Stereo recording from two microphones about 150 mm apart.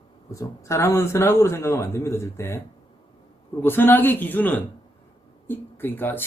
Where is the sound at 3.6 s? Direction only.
15° left (ahead or behind).